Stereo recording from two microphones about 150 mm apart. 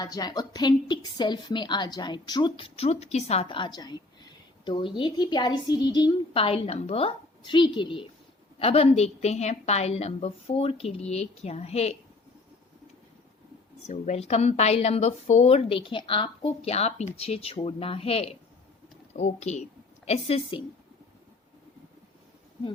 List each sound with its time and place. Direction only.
0.0 s a woman's voice: 25° left (ahead or behind); by 3.4 s 45° left (ahead or behind)
3.4 s a woman's voice: 30° left (ahead or behind)
13.8 s a woman's voice: 50° left (ahead or behind)